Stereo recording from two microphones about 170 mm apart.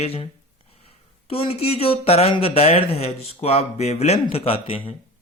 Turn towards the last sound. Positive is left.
turn(degrees=35)  # may be behind; listen again after turning